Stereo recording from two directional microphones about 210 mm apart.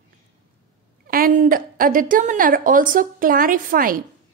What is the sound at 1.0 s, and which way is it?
A woman's voice, 40° right (ahead or behind).